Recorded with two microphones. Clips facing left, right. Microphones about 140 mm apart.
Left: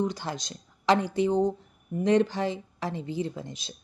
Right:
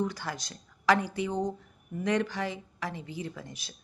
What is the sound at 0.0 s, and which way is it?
A woman's voice, 20° left (ahead or behind).